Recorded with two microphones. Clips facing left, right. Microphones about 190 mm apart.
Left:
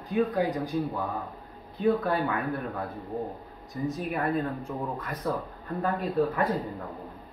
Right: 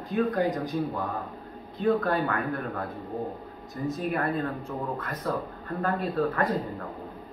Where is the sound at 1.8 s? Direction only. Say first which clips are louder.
Even; 10° left (ahead or behind).